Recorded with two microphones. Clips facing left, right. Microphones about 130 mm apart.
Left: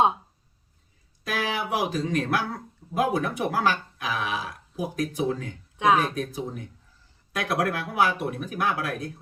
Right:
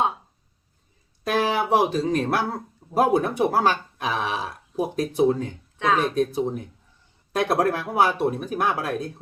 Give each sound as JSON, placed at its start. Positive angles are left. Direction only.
{"t": 1.4, "sound": "speech", "side_deg": -30}